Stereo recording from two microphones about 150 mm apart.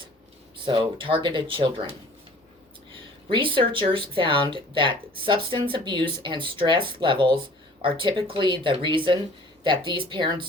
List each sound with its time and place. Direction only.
0.5 s speech: 35° right (ahead or behind)
3.3 s speech: 35° right (ahead or behind)